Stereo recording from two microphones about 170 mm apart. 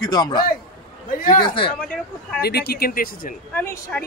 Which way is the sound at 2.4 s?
70° left (ahead or behind).